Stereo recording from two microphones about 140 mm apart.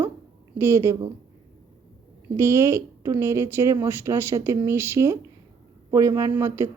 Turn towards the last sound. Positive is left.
turn(degrees=-20)  # may be behind; listen again after turning